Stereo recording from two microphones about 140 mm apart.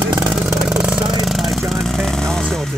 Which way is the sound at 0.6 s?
5° right (ahead or behind).